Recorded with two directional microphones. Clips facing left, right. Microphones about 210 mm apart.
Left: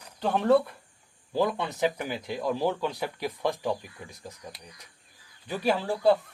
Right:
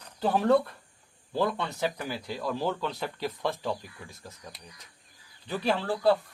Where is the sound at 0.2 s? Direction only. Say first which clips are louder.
Left 1 dB; 5° right (ahead or behind).